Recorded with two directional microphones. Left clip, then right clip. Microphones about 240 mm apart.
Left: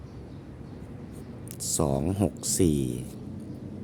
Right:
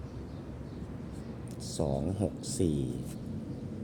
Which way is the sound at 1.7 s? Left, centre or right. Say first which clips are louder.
Left 6 dB; left.